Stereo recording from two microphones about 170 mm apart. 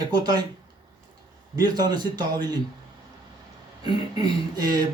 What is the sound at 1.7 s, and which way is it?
Speech, 25° right (ahead or behind).